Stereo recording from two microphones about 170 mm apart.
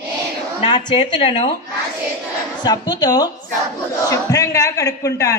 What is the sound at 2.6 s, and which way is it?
A man's voice, 25° left (ahead or behind).